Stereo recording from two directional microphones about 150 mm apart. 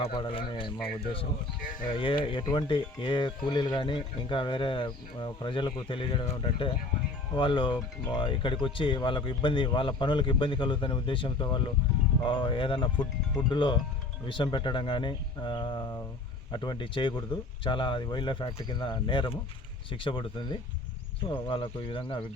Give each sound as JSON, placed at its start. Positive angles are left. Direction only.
{"t": 0.0, "sound": "speech", "side_deg": 35}
{"t": 1.9, "sound": "speech", "side_deg": 35}